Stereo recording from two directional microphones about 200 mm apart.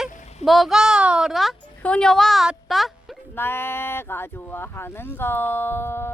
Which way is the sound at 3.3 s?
10° left (ahead or behind).